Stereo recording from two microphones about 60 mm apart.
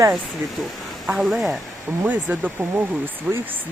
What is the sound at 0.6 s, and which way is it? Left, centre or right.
Speech, centre.